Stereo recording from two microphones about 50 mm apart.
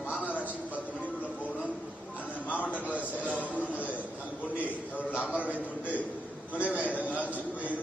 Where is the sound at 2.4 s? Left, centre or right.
Left.